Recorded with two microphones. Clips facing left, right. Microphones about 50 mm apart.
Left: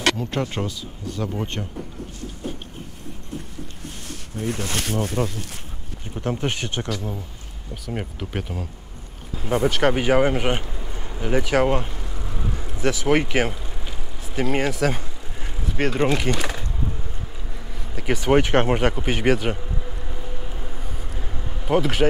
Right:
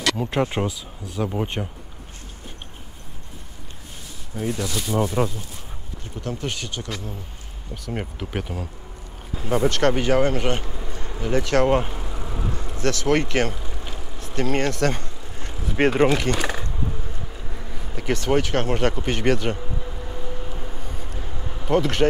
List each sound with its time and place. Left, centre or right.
0.2 s speech: centre
4.1 s a sound: left
5.2 s speech: centre
6.2 s speech: left
7.7 s speech: centre
11.7 s bee: centre
12.5 s vehicle: centre
15.7 s speech: centre
16.1 s speech: centre
17.9 s speech: centre
18.3 s speech: left
18.8 s speech: centre
19.6 s a sound: centre
21.6 s speech: centre